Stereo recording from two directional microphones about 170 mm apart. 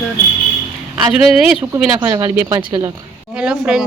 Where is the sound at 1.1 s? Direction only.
5° right (ahead or behind).